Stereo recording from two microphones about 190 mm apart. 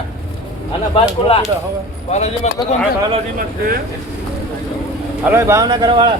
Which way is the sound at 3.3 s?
50° right (ahead or behind).